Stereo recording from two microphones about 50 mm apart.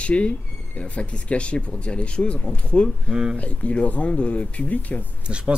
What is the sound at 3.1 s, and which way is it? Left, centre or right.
Speech, centre.